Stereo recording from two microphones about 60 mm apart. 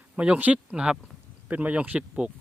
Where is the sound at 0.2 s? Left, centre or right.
Right.